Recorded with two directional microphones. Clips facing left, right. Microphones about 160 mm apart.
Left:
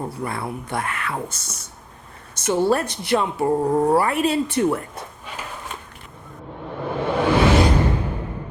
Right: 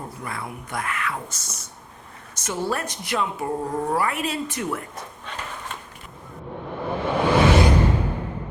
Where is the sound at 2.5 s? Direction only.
30° left (ahead or behind).